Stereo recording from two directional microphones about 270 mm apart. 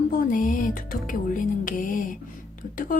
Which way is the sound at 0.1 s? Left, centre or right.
Left.